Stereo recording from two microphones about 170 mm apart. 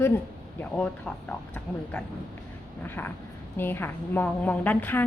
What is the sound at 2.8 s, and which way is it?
A woman's voice, 10° left (ahead or behind).